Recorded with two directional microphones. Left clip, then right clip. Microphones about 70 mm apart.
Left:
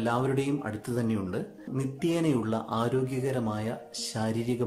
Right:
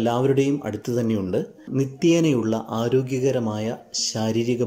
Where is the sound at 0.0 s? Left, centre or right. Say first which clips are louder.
Right 8 dB; right.